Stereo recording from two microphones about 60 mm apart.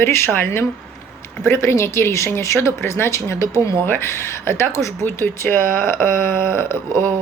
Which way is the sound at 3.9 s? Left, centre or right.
Left.